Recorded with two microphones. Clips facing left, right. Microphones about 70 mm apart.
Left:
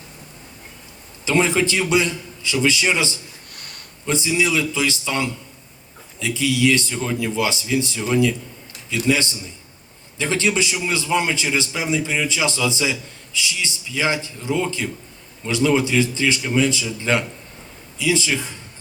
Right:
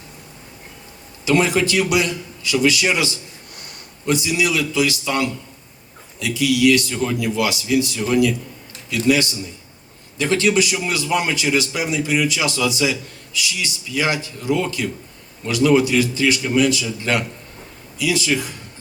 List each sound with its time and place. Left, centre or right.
1.2 s a man's voice: left
4.1 s a man's voice: left
6.1 s a man's voice: left